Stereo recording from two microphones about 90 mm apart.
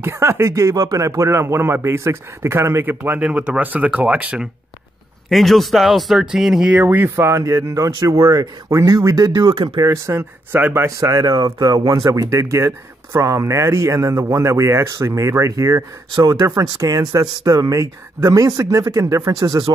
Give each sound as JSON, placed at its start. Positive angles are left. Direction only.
{"t": 0.0, "sound": "speech", "side_deg": -30}
{"t": 5.3, "sound": "speech", "side_deg": 0}
{"t": 6.8, "sound": "speech", "side_deg": -20}
{"t": 7.2, "sound": "speech", "side_deg": -35}
{"t": 9.5, "sound": "speech", "side_deg": -90}
{"t": 9.8, "sound": "speech", "side_deg": -35}
{"t": 10.5, "sound": "speech", "side_deg": -25}
{"t": 11.0, "sound": "speech", "side_deg": -40}
{"t": 16.2, "sound": "speech", "side_deg": -50}
{"t": 19.4, "sound": "speech", "side_deg": -55}